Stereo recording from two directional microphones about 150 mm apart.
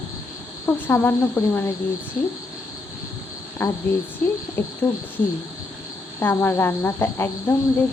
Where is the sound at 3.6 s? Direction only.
20° left (ahead or behind).